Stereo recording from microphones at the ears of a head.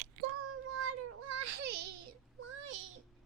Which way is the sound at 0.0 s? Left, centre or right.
Right.